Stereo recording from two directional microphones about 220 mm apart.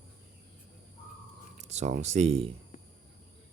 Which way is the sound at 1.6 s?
30° right (ahead or behind).